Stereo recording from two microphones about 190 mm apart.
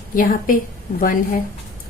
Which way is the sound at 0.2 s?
45° left (ahead or behind).